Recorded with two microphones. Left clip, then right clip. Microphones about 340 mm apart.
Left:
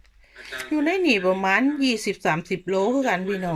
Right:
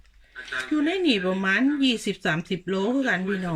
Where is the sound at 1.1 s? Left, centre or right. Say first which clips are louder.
Left 3 dB; centre.